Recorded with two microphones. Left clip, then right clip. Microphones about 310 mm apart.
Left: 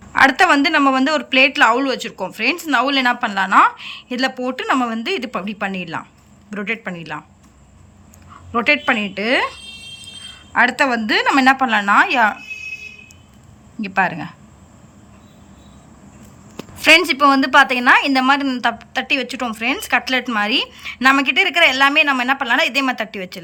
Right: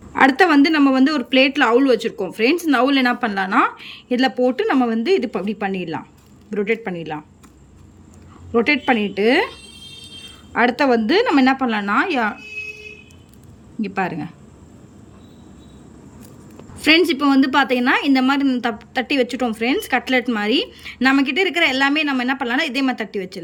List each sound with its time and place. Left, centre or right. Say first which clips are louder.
0.1 s a woman's voice: left 2 dB; centre
8.5 s a woman's voice: left 1 dB; centre
13.8 s a woman's voice: left 5 dB; centre
16.7 s a woman's voice: left 3 dB; centre